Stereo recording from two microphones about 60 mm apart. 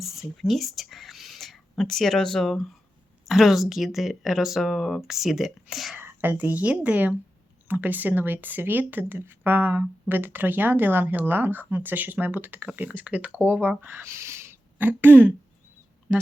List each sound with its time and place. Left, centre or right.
0.0 s speech: centre
6.0 s speech: right
13.8 s speech: right